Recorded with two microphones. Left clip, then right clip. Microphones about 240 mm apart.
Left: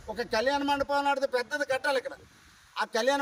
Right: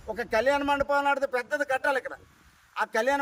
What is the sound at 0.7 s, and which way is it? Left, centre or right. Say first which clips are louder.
Speech: right 2 dB; right.